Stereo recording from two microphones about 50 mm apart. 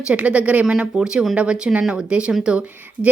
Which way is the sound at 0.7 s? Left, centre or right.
Centre.